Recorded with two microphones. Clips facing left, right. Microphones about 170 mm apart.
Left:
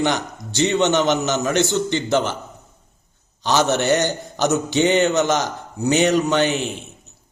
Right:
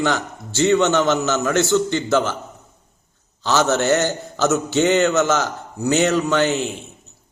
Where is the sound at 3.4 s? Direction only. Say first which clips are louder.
Even; 15° left (ahead or behind).